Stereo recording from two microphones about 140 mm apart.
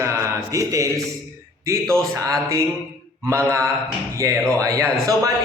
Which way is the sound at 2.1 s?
25° right (ahead or behind).